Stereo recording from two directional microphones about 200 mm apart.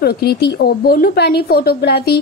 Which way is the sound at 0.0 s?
50° left (ahead or behind).